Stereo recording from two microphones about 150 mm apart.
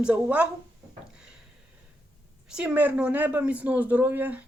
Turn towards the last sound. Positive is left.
turn(degrees=-10)  # may be behind; listen again after turning